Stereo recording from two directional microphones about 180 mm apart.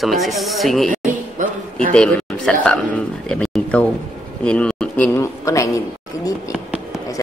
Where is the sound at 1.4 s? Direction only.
45° right (ahead or behind).